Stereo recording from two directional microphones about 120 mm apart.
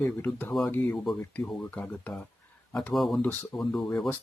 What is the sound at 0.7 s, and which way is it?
Speech, 15° left (ahead or behind).